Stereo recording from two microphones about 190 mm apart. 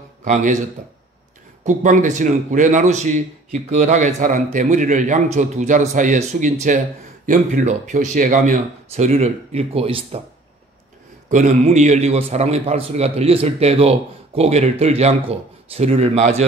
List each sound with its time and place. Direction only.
0.2 s a man's voice: 40° right (ahead or behind)
1.6 s a man's voice: 40° right (ahead or behind)
11.2 s a man's voice: 40° right (ahead or behind)